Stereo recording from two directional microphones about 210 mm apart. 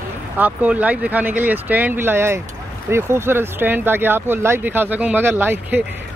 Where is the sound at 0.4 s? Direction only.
5° right (ahead or behind).